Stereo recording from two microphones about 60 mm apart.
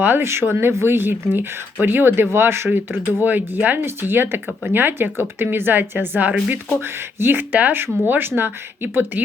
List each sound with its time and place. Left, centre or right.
0.0 s speech: right
6.8 s speech: right